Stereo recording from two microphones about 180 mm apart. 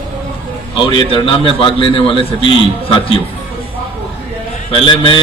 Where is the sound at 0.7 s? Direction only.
25° left (ahead or behind).